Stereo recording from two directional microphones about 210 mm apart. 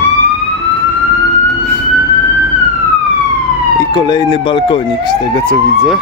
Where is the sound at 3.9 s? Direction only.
20° left (ahead or behind).